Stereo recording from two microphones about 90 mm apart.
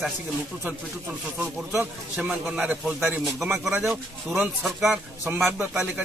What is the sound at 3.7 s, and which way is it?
Speech, 20° right (ahead or behind).